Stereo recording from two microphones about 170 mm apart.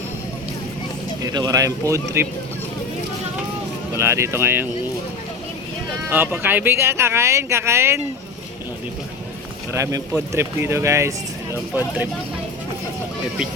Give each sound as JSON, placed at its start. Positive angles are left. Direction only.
{"t": 1.2, "sound": "speech", "side_deg": -20}
{"t": 3.9, "sound": "speech", "side_deg": -15}
{"t": 6.1, "sound": "speech", "side_deg": -10}
{"t": 9.7, "sound": "speech", "side_deg": -15}